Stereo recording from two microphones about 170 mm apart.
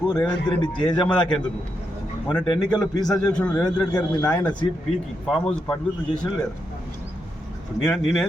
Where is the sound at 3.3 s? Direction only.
5° left (ahead or behind).